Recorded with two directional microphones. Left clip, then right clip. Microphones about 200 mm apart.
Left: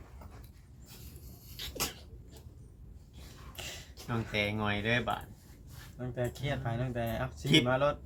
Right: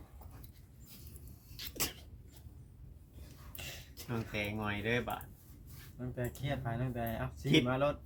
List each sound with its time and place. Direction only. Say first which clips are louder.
1.5 s sneeze: left 3 dB; 25° right (ahead or behind)
3.5 s a sound: left 4 dB; 15° left (ahead or behind)
4.1 s speech: left 6 dB; 45° left (ahead or behind)
6.0 s speech: left 5 dB; 15° left (ahead or behind)